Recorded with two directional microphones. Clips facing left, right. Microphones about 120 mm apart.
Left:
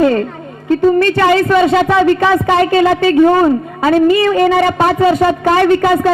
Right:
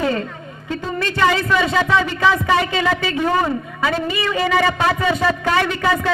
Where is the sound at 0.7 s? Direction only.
50° left (ahead or behind).